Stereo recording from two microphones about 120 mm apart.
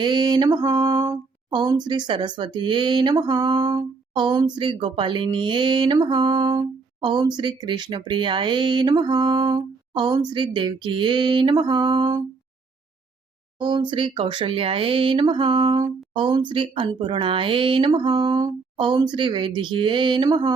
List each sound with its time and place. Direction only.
0.0 s speech: 35° right (ahead or behind)
0.7 s mantra: 25° right (ahead or behind)
1.5 s speech: 35° right (ahead or behind)
13.6 s speech: 40° right (ahead or behind)